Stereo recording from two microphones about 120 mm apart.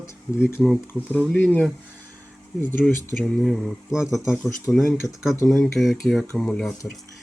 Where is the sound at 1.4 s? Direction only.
15° left (ahead or behind).